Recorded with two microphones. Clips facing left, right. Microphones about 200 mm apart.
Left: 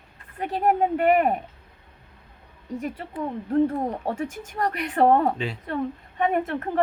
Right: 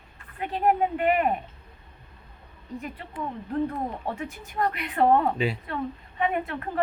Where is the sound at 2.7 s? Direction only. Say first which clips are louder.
Left 5 dB; 45° left (ahead or behind).